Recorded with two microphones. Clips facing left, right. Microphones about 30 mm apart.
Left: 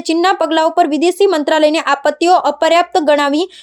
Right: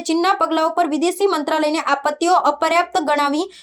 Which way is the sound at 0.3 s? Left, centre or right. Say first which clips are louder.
Left 4 dB; left.